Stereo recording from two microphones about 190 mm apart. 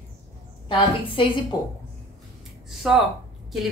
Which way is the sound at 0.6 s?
30° left (ahead or behind).